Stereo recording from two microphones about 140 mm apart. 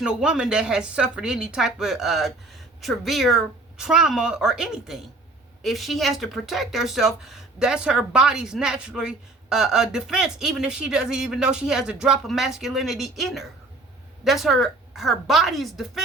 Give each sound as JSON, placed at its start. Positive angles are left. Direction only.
{"t": 0.0, "sound": "speech", "side_deg": -5}